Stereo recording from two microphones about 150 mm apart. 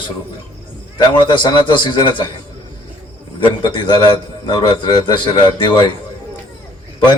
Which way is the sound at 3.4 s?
35° left (ahead or behind).